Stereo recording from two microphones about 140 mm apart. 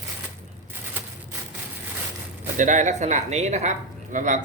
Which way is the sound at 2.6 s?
60° right (ahead or behind).